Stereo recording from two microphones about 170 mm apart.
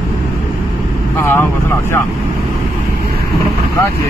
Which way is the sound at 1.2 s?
15° left (ahead or behind).